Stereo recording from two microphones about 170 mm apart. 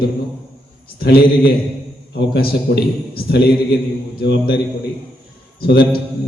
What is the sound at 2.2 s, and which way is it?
A man's voice, 70° left (ahead or behind).